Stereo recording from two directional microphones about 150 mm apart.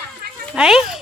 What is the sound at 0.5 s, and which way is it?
Speech, 5° right (ahead or behind).